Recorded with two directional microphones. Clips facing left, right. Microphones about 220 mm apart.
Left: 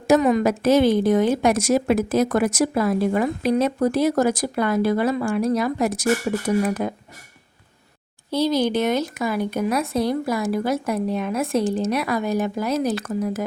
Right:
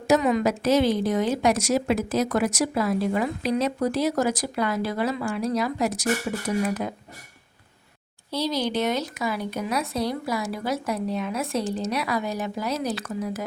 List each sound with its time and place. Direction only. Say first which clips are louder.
0.1 s a woman's voice: left 4 dB; 45° left (ahead or behind)
8.3 s a woman's voice: left 6 dB; 50° left (ahead or behind)